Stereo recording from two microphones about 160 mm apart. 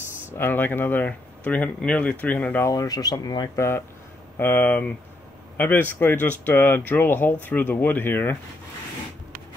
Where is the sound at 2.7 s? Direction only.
25° left (ahead or behind).